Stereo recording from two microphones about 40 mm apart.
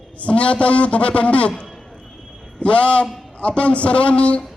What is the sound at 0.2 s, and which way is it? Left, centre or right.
A man's voice, left.